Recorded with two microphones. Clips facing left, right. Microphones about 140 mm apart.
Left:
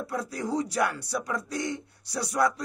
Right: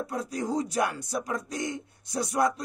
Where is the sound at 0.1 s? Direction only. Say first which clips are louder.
Left 1 dB; 20° right (ahead or behind).